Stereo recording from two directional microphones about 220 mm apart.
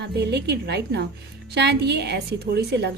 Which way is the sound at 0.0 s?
50° right (ahead or behind).